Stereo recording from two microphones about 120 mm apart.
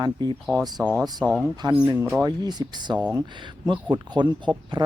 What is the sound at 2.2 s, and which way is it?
Speech, 35° right (ahead or behind).